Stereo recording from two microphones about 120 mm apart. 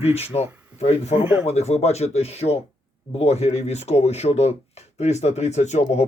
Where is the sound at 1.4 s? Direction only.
60° left (ahead or behind).